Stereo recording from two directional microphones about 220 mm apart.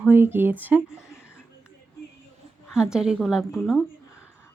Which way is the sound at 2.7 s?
5° right (ahead or behind).